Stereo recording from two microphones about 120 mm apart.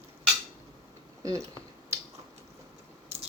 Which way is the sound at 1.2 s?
25° right (ahead or behind).